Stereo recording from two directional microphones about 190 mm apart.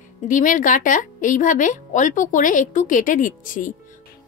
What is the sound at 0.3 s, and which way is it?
Speech, 45° left (ahead or behind).